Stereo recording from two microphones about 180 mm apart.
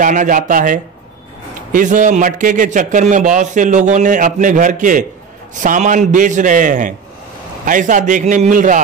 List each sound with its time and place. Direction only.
0.0 s a man's voice: 45° right (ahead or behind)